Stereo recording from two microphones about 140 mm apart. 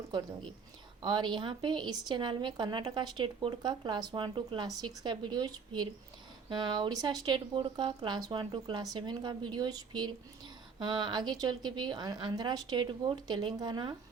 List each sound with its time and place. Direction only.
1.0 s speech: 35° right (ahead or behind)